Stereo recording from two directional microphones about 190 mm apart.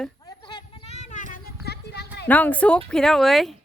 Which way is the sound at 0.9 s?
40° left (ahead or behind).